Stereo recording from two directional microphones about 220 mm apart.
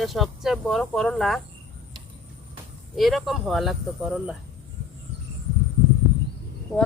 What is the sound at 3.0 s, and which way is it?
Speech, centre (ahead or behind).